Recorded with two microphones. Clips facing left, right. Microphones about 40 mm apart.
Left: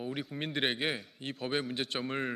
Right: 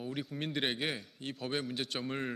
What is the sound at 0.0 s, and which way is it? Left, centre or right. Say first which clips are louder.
A man's voice: left 1 dB; centre.